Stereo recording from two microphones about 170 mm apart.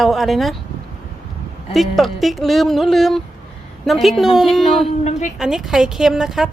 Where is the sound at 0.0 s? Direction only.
Centre (ahead or behind).